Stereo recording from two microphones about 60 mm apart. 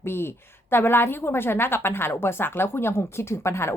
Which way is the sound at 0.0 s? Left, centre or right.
Left.